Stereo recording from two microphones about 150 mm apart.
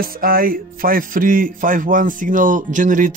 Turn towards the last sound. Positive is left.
turn(degrees=-60)  # may be behind; listen again after turning